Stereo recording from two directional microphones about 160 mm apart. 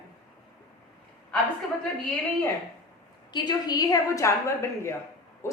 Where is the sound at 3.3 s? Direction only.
25° left (ahead or behind).